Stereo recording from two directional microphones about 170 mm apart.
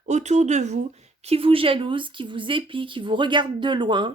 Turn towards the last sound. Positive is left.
turn(degrees=-25)  # may be behind; listen again after turning